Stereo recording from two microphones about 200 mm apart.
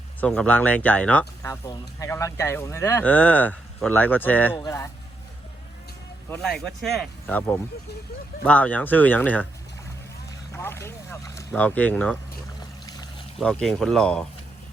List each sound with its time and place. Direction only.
0.2 s speech: 5° left (ahead or behind)
6.3 s speech: centre (ahead or behind)
10.5 s speech: 10° left (ahead or behind)
12.8 s pour: 20° left (ahead or behind)
13.4 s speech: 5° left (ahead or behind)